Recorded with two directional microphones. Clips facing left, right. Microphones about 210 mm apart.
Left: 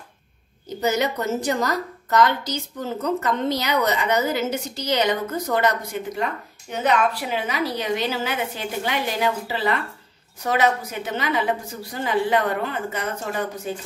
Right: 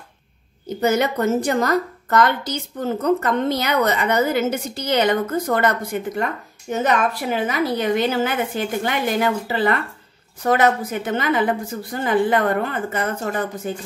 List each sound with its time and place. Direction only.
0.7 s a woman's voice: 55° right (ahead or behind)